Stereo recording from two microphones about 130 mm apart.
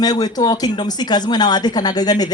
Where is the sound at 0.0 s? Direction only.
30° left (ahead or behind).